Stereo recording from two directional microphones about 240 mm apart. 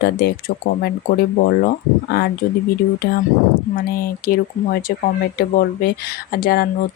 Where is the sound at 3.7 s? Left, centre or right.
Left.